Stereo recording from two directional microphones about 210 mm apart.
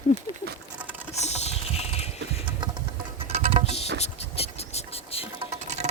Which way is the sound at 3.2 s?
30° right (ahead or behind).